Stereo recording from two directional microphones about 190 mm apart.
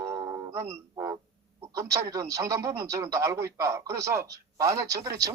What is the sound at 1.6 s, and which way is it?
Speech, 20° right (ahead or behind).